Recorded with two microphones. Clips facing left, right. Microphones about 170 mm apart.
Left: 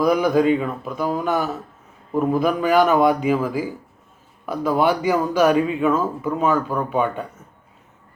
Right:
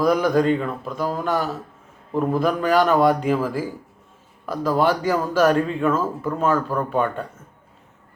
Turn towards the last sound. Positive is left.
turn(degrees=5)  # may be behind; listen again after turning